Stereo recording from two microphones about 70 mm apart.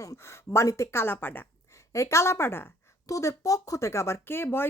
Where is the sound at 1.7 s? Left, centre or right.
Left.